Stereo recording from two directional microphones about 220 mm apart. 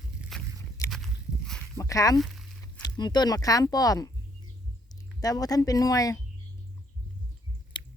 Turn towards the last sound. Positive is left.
turn(degrees=20)  # may be behind; listen again after turning